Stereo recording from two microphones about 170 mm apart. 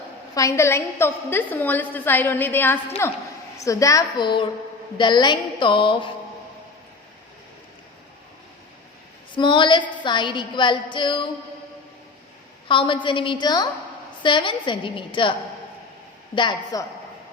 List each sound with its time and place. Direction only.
0.3 s a woman's voice: 15° left (ahead or behind)
9.3 s a woman's voice: 30° left (ahead or behind)
12.6 s a woman's voice: 30° left (ahead or behind)